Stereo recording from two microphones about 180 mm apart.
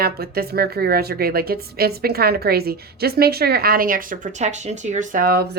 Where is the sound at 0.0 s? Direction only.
60° right (ahead or behind).